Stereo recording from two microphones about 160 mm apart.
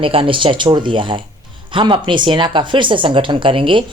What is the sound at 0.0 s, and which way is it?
Speech, 35° right (ahead or behind).